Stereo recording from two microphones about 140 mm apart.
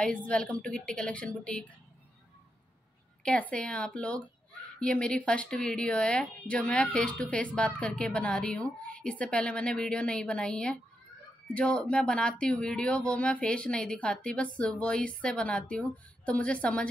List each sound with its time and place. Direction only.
0.0 s speech: 10° left (ahead or behind)
3.3 s speech: 5° left (ahead or behind)